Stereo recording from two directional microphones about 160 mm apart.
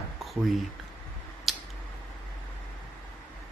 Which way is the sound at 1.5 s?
Centre (ahead or behind).